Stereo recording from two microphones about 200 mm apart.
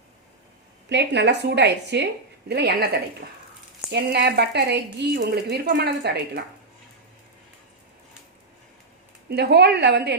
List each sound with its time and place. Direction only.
0.9 s speech: 60° right (ahead or behind)
3.9 s speech: 55° right (ahead or behind)
9.3 s speech: 55° right (ahead or behind)